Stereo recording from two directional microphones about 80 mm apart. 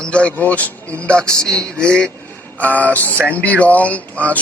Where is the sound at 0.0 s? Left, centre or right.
Centre.